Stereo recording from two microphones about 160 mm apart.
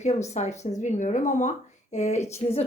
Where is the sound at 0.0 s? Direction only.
45° left (ahead or behind).